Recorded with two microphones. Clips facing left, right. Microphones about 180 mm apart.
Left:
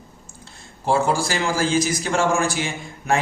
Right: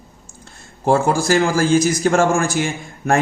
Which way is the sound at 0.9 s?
50° right (ahead or behind).